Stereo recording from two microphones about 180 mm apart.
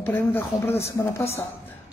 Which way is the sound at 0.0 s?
10° left (ahead or behind).